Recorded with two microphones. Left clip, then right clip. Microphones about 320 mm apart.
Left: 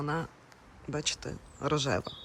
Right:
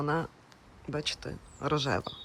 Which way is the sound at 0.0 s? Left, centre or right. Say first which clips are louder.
Right 3 dB; centre.